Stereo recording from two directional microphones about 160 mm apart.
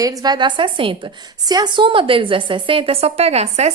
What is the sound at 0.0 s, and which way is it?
A woman's voice, 25° right (ahead or behind).